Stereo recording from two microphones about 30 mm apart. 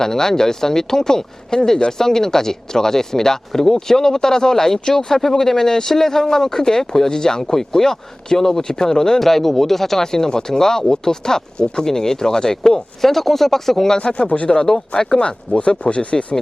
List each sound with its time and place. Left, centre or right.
0.0 s speech: centre
10.0 s speech: centre
13.0 s speech: centre
13.9 s speech: left
14.3 s speech: left
15.8 s speech: left